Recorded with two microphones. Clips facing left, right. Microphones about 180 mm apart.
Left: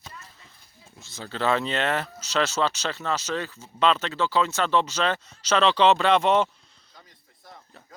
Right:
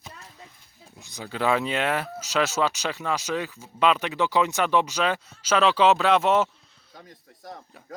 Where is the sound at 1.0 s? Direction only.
15° right (ahead or behind).